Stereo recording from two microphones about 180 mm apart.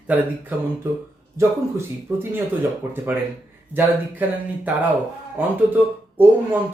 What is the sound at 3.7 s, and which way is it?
Speech, 10° right (ahead or behind).